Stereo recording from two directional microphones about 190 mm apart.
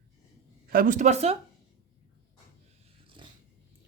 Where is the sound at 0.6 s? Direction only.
50° right (ahead or behind).